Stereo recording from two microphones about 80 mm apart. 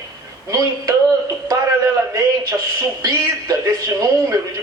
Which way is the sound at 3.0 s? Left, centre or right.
Right.